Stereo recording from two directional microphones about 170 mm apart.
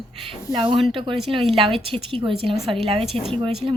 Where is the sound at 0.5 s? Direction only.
30° right (ahead or behind).